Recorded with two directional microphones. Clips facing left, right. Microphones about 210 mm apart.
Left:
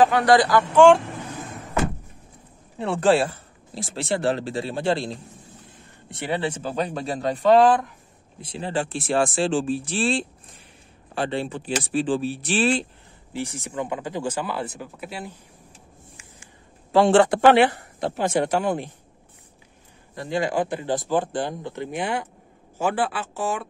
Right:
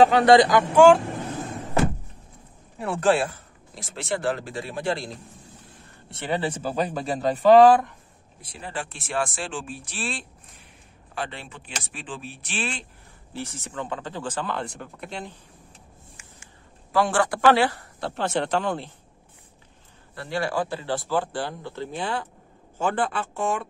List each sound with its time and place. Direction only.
0.0 s speech: 25° right (ahead or behind)
2.8 s speech: 25° left (ahead or behind)
6.0 s speech: 15° left (ahead or behind)
6.3 s speech: 5° right (ahead or behind)
8.4 s speech: 25° left (ahead or behind)
13.3 s speech: 15° left (ahead or behind)
16.9 s speech: 25° left (ahead or behind)
20.2 s speech: 15° left (ahead or behind)